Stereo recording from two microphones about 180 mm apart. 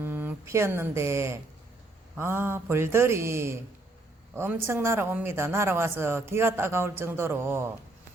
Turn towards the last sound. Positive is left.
turn(degrees=-15)  # may be behind; listen again after turning